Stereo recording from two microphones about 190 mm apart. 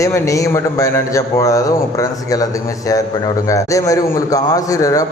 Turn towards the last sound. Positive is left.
turn(degrees=20)  # may be behind; listen again after turning